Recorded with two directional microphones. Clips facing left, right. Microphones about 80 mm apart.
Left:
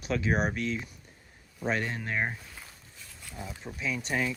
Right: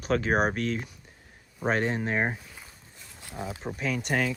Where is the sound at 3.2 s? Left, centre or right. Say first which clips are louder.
Right 6 dB; right.